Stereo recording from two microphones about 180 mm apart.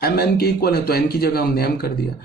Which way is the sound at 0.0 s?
60° left (ahead or behind).